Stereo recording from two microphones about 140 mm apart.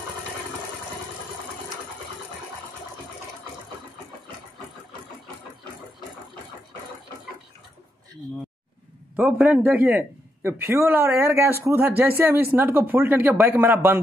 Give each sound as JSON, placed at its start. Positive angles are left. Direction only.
{"t": 9.1, "sound": "a man's voice", "side_deg": -10}